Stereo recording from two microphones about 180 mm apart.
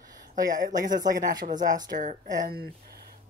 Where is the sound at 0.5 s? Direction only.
45° right (ahead or behind).